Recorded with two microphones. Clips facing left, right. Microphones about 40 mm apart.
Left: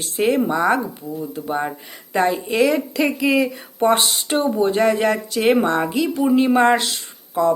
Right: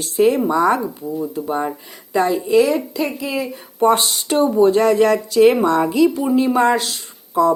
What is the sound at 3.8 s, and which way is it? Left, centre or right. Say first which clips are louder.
Speech: right 2 dB; left.